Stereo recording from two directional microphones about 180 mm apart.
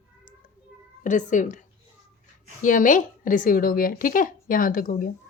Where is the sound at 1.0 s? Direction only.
45° left (ahead or behind).